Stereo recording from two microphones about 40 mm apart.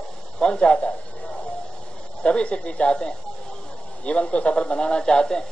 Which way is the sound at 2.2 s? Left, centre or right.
Left.